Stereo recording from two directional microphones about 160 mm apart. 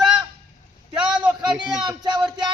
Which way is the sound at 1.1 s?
5° right (ahead or behind).